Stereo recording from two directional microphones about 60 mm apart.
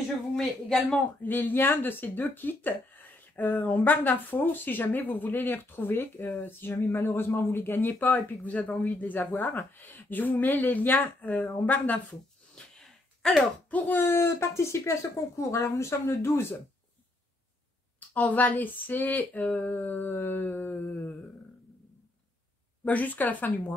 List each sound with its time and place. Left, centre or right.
0.4 s speech: centre
1.2 s speech: left
6.9 s speech: left
8.0 s speech: left
12.5 s sneeze: centre
13.3 s speech: left
14.0 s speech: left
18.1 s speech: left
22.8 s speech: left